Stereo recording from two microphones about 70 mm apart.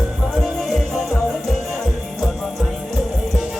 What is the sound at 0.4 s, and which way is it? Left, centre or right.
Music, centre.